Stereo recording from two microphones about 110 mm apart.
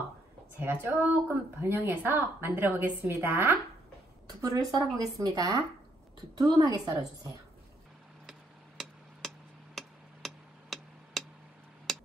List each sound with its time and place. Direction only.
0.6 s speech: 20° right (ahead or behind)
4.3 s a woman's voice: 35° right (ahead or behind)
8.3 s tick-tock: 5° right (ahead or behind)
11.9 s a sound: centre (ahead or behind)